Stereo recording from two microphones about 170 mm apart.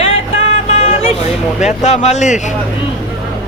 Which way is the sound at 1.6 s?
40° left (ahead or behind).